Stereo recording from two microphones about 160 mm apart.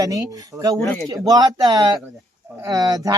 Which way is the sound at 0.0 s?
20° right (ahead or behind).